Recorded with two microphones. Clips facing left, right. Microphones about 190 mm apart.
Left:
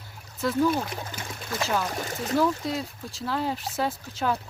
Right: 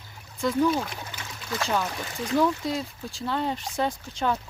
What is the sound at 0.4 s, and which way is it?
Speech, 5° left (ahead or behind).